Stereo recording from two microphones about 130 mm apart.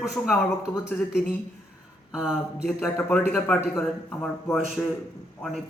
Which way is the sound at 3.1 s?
5° left (ahead or behind).